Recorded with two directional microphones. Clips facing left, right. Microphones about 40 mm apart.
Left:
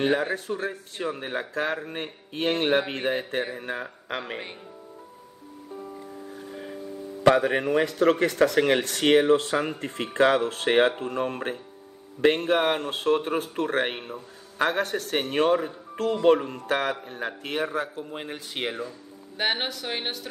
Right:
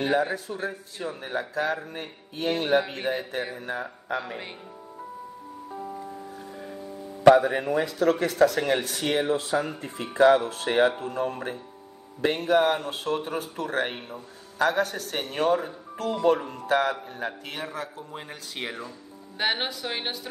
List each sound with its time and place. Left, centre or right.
0.0 s speech: left
7.3 s speech: left
19.3 s speech: centre